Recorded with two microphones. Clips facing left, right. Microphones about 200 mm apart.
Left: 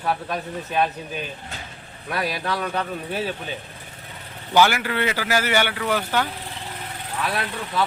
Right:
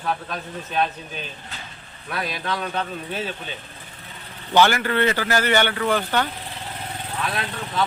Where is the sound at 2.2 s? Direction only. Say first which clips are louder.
Left 1 dB; 10° left (ahead or behind).